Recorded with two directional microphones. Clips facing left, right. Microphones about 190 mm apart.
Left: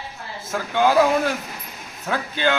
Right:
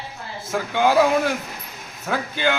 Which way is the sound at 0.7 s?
15° right (ahead or behind).